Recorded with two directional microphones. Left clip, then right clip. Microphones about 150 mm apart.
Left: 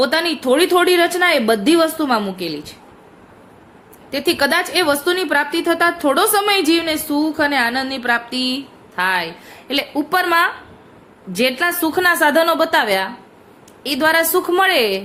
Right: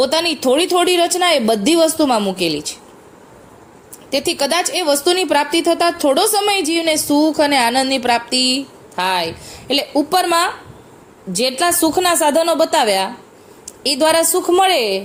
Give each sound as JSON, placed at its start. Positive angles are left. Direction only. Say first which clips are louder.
{"t": 0.0, "sound": "speech", "louder": "right 1 dB", "side_deg": -35}
{"t": 4.1, "sound": "speech", "louder": "even", "side_deg": -35}
{"t": 11.8, "sound": "a woman's voice", "louder": "left 2 dB", "side_deg": -20}